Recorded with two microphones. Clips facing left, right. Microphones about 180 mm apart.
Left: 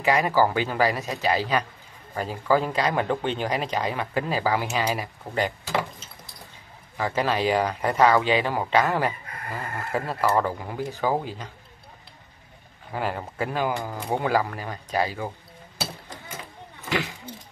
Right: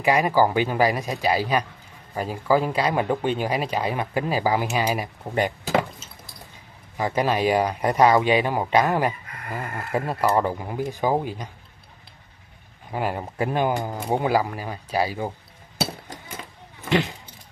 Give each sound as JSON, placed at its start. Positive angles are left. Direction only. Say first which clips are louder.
{"t": 0.0, "sound": "speech", "louder": "right 2 dB", "side_deg": -15}
{"t": 7.0, "sound": "speech", "louder": "right 2 dB", "side_deg": -15}
{"t": 12.9, "sound": "speech", "louder": "right 2 dB", "side_deg": -15}